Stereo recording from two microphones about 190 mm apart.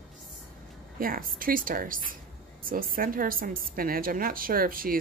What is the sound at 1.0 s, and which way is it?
A woman's voice, 50° right (ahead or behind).